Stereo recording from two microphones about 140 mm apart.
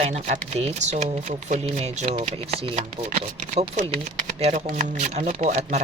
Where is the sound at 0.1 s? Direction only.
55° right (ahead or behind).